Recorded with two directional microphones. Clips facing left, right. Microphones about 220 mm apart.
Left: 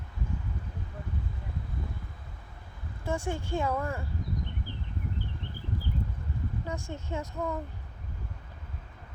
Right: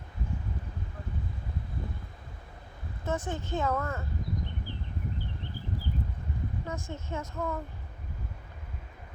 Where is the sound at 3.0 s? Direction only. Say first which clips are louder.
Left 1 dB; 10° left (ahead or behind).